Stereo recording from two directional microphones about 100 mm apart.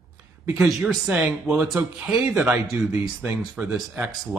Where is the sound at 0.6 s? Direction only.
5° right (ahead or behind).